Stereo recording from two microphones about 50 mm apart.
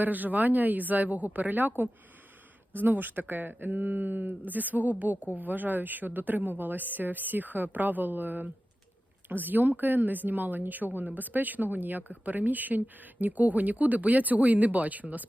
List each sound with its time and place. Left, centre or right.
0.0 s speech: right